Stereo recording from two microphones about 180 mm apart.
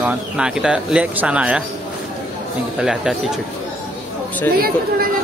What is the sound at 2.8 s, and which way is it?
Speech, 5° right (ahead or behind).